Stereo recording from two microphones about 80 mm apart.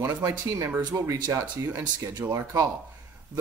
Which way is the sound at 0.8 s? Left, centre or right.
Right.